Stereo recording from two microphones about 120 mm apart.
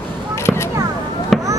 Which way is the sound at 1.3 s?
Centre (ahead or behind).